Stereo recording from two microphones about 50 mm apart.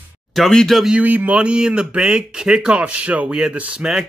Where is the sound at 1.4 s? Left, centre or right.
Right.